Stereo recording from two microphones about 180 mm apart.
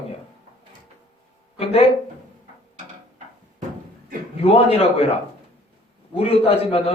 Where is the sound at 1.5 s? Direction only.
35° left (ahead or behind).